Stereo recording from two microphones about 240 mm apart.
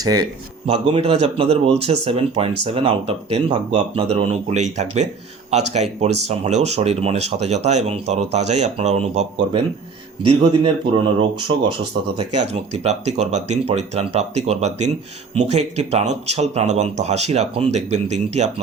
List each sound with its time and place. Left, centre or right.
0.0 s speech: centre
10.6 s speech: right